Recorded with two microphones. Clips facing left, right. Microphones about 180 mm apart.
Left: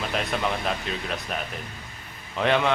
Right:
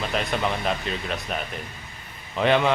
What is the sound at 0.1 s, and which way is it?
A man's voice, centre (ahead or behind).